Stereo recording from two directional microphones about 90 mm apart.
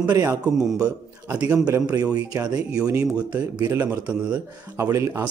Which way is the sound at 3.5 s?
50° right (ahead or behind).